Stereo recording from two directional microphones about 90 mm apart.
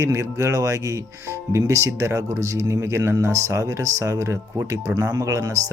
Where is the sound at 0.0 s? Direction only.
30° right (ahead or behind).